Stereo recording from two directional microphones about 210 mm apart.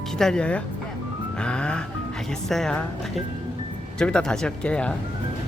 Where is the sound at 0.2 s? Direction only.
5° left (ahead or behind).